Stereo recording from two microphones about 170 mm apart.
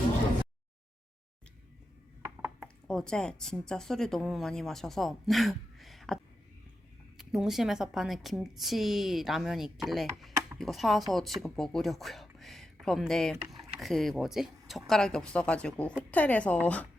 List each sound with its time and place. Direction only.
2.2 s a sound: 15° right (ahead or behind)
2.8 s a woman's voice: 5° left (ahead or behind)
7.2 s a woman's voice: centre (ahead or behind)